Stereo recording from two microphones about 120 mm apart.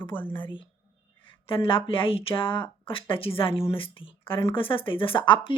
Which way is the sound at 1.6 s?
45° left (ahead or behind).